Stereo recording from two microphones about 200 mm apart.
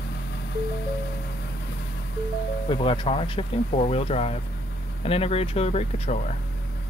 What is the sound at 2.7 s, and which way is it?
Speech, 25° left (ahead or behind).